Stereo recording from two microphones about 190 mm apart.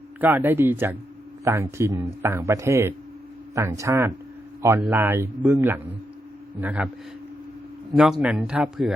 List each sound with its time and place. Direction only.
0.2 s speech: 10° right (ahead or behind)
7.9 s speech: centre (ahead or behind)